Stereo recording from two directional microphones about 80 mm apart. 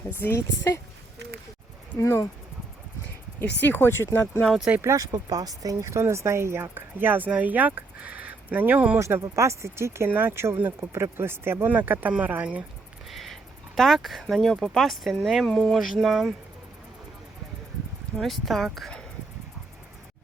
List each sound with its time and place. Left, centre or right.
0.3 s speech: left
2.0 s speech: left
3.4 s speech: left
4.8 s speech: right; by 9.0 s centre
9.0 s speech: right; by 12.6 s centre
13.1 s speech: centre
15.4 s speech: centre
15.7 s speech: centre
18.2 s speech: centre